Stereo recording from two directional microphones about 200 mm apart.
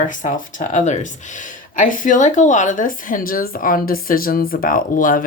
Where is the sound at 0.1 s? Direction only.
40° left (ahead or behind).